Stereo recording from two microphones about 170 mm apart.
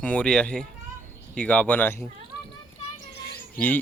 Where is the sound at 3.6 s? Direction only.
10° left (ahead or behind).